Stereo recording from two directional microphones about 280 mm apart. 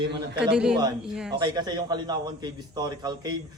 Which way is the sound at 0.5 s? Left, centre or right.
Centre.